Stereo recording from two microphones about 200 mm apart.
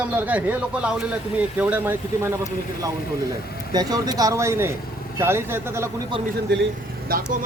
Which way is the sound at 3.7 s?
20° right (ahead or behind).